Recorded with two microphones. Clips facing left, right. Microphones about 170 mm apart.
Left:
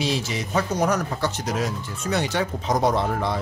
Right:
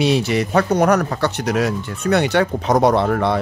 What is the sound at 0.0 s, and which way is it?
Speech, 65° right (ahead or behind).